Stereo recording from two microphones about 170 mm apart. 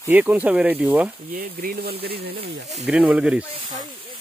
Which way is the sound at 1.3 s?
60° right (ahead or behind).